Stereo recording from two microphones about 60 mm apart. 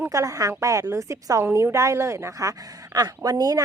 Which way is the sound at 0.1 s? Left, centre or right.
Right.